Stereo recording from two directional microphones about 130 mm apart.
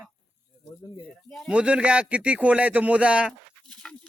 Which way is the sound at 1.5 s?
10° right (ahead or behind).